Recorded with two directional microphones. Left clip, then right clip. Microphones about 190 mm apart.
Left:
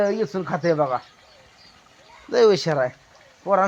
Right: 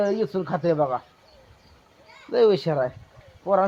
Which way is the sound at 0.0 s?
20° left (ahead or behind).